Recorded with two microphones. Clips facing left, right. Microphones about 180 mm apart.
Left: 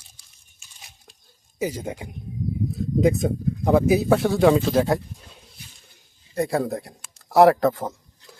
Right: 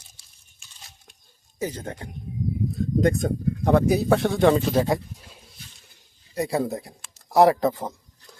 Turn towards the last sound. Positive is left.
turn(degrees=0)  # may be behind; listen again after turning